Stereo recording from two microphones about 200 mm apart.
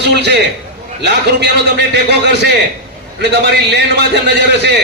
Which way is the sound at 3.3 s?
55° right (ahead or behind).